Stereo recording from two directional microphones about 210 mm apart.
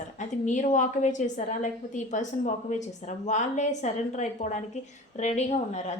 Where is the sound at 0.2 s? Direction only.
35° left (ahead or behind).